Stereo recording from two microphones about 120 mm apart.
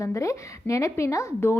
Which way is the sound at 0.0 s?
25° left (ahead or behind).